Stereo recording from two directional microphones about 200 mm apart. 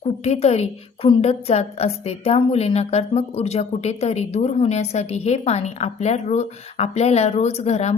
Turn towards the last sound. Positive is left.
turn(degrees=35)  # may be behind; listen again after turning